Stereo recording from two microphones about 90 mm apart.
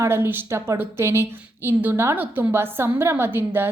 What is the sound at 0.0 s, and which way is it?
A woman's voice, 25° right (ahead or behind).